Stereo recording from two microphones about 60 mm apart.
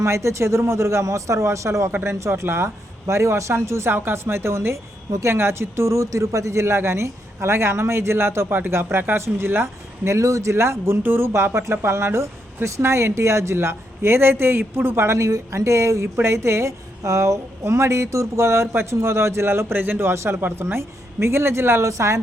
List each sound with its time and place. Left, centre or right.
0.0 s a woman's voice: right
3.1 s a woman's voice: right
10.1 s a woman's voice: right
15.0 s a woman's voice: right